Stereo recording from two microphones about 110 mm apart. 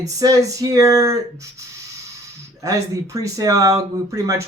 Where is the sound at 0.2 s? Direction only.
30° right (ahead or behind).